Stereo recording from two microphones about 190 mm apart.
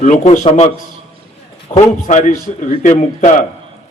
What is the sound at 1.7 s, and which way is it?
Speech, 15° left (ahead or behind).